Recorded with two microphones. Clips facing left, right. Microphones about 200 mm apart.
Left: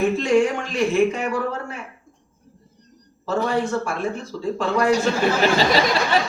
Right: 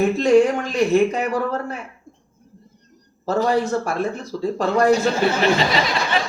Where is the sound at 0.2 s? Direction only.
40° right (ahead or behind).